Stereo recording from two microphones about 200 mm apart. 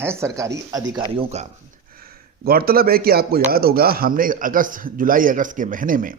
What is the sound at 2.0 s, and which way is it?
Speech, 50° right (ahead or behind).